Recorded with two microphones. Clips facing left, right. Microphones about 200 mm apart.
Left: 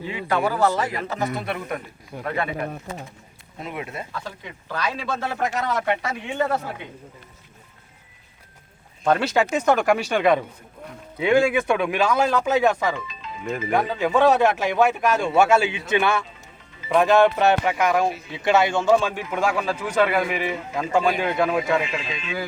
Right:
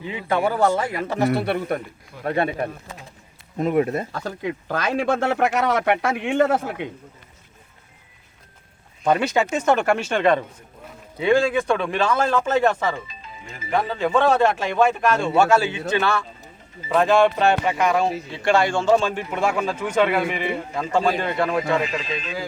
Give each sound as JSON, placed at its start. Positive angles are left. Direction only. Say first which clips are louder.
{"t": 0.1, "sound": "speech", "louder": "right 2 dB", "side_deg": -25}
{"t": 3.6, "sound": "speech", "louder": "right 12 dB", "side_deg": -45}
{"t": 5.2, "sound": "a man's voice", "louder": "right 5 dB", "side_deg": -70}
{"t": 9.0, "sound": "speech", "louder": "right 1 dB", "side_deg": -10}
{"t": 9.3, "sound": "speech", "louder": "even", "side_deg": 5}
{"t": 13.4, "sound": "speech", "louder": "left 14 dB", "side_deg": 60}
{"t": 13.7, "sound": "speech", "louder": "even", "side_deg": 10}
{"t": 19.3, "sound": "a man's voice", "louder": "left 1 dB", "side_deg": 0}
{"t": 21.8, "sound": "speech", "louder": "right 2 dB", "side_deg": -40}